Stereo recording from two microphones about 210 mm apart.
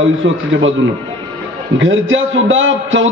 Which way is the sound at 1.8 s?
65° right (ahead or behind).